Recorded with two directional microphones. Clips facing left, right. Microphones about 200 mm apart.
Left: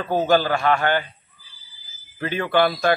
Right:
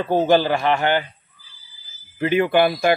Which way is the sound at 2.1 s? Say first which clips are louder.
Right 4 dB; 15° right (ahead or behind).